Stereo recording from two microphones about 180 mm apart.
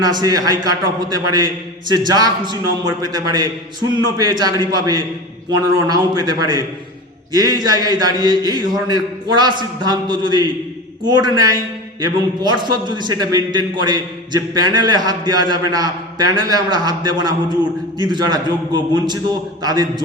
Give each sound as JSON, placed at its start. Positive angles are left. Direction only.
{"t": 0.0, "sound": "a man's voice", "side_deg": -20}